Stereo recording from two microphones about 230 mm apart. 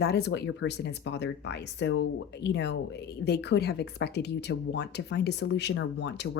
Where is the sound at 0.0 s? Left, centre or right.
Left.